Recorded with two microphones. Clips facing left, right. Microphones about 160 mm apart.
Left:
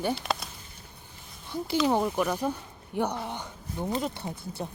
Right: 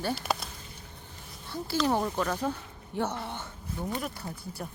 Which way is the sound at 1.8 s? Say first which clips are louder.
Left 2 dB; 10° left (ahead or behind).